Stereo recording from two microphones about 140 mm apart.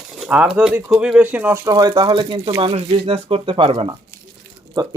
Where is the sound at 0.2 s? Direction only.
5° right (ahead or behind).